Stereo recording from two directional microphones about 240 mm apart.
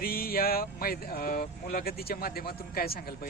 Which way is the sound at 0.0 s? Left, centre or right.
Left.